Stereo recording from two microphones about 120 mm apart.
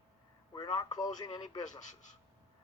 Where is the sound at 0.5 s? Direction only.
35° left (ahead or behind).